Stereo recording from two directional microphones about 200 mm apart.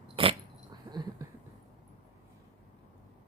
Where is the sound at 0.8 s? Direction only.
20° right (ahead or behind).